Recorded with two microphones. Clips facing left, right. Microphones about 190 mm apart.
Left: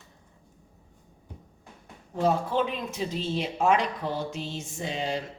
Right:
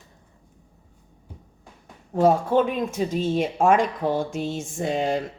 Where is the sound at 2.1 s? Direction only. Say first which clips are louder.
Right 6 dB; 50° right (ahead or behind).